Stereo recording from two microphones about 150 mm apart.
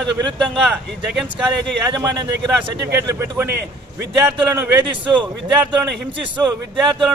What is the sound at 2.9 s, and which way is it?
Speech, 15° right (ahead or behind).